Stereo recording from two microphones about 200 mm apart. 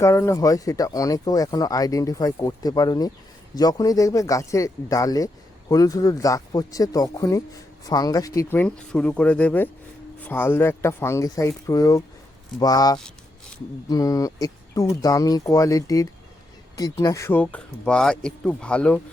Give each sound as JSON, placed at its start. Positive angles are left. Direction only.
{"t": 0.0, "sound": "speech", "side_deg": 15}